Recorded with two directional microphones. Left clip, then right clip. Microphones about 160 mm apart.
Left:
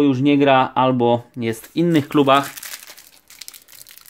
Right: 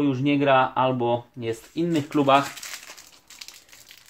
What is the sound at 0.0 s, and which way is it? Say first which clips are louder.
Speech: left 7 dB; 70° left (ahead or behind).